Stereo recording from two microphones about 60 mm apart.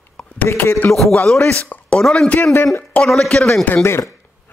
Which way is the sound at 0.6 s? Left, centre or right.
Left.